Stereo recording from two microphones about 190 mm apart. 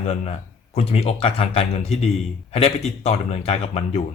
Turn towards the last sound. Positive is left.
turn(degrees=35)  # may be behind; listen again after turning